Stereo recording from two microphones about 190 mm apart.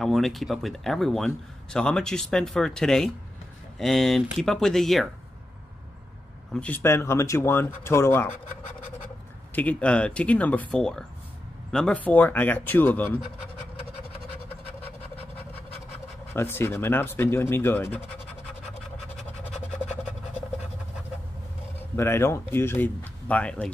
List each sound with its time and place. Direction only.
0.0 s a man's voice: centre (ahead or behind)
6.5 s speech: 10° left (ahead or behind)
9.6 s speech: 5° left (ahead or behind)
14.1 s vehicle: 30° left (ahead or behind)
16.3 s speech: 10° left (ahead or behind)
21.9 s speech: 15° left (ahead or behind)